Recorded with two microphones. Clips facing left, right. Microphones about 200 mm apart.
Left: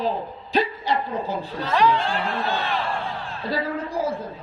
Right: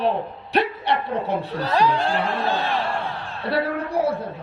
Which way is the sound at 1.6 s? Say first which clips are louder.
Left 1 dB; 35° right (ahead or behind).